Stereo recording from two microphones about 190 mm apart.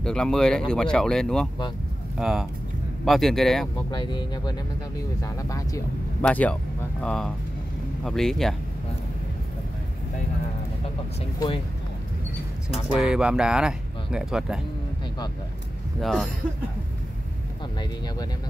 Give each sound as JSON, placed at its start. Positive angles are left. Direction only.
{"t": 0.0, "sound": "speech", "side_deg": 5}
{"t": 3.9, "sound": "speech", "side_deg": 25}
{"t": 6.2, "sound": "speech", "side_deg": 5}
{"t": 11.3, "sound": "speech", "side_deg": 25}
{"t": 12.6, "sound": "speech", "side_deg": -5}
{"t": 16.0, "sound": "speech", "side_deg": 0}